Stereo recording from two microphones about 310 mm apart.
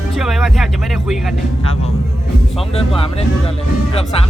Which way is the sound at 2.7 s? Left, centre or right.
Centre.